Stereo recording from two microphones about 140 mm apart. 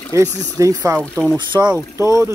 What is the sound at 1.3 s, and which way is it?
Speech, 35° right (ahead or behind).